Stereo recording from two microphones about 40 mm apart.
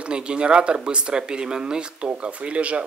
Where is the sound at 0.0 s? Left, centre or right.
Right.